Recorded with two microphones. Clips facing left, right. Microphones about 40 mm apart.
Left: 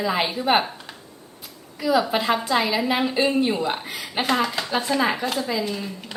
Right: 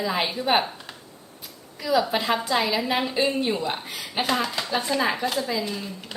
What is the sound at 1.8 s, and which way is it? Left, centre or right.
A woman's voice, centre.